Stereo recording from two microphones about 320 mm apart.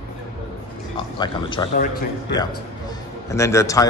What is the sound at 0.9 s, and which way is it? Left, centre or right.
Speech, centre.